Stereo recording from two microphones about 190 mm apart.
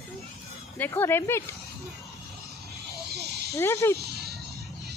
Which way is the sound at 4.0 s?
60° right (ahead or behind).